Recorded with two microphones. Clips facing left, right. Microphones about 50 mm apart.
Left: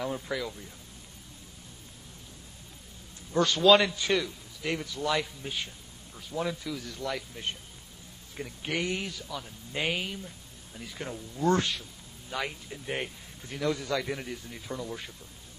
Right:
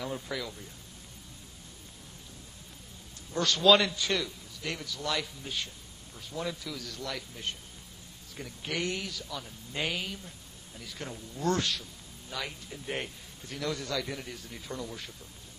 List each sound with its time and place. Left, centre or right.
0.0 s speech: centre
3.3 s a man's voice: centre
4.7 s speech: left
9.2 s speech: centre
14.2 s speech: centre